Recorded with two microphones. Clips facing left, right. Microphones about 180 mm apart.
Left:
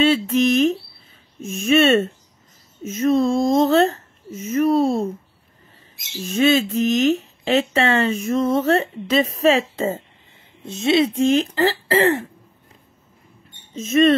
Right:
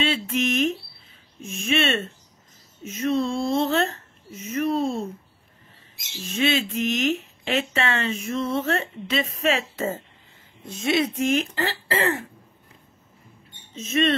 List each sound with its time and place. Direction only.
0.0 s speech: 40° left (ahead or behind)
6.1 s speech: 45° left (ahead or behind)
13.7 s speech: 45° left (ahead or behind)